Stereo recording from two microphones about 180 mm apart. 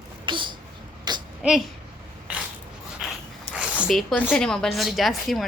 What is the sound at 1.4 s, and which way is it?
Speech, centre (ahead or behind).